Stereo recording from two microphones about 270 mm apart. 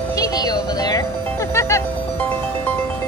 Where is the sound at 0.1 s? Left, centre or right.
Centre.